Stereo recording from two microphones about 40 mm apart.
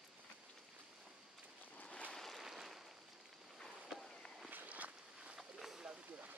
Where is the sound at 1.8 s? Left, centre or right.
Left.